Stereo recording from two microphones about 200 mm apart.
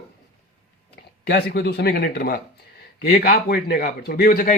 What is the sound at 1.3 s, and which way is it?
A man's voice, 55° left (ahead or behind).